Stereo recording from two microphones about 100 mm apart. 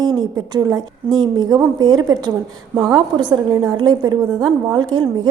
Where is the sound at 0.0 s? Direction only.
45° right (ahead or behind).